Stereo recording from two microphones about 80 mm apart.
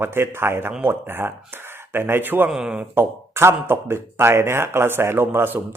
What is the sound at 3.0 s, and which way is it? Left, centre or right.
Speech, right.